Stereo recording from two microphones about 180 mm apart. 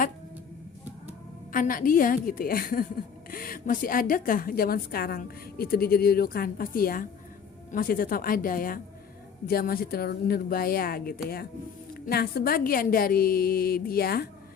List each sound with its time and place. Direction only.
1.5 s a woman's voice: 50° left (ahead or behind)